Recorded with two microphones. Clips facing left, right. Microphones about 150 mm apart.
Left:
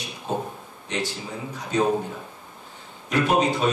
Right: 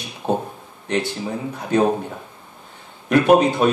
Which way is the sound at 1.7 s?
60° right (ahead or behind).